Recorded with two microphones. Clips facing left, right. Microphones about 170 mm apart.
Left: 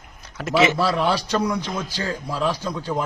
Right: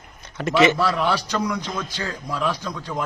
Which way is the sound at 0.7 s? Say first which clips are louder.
Left 1 dB; 30° left (ahead or behind).